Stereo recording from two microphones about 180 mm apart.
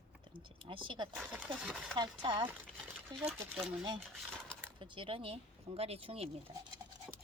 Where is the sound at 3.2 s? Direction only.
10° right (ahead or behind).